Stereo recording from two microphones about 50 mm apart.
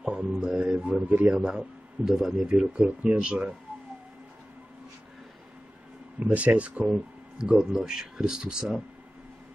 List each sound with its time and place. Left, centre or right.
0.3 s speech: centre
0.6 s speech: right
1.4 s a man's voice: centre
2.6 s speech: right
6.1 s speech: right
6.9 s speech: centre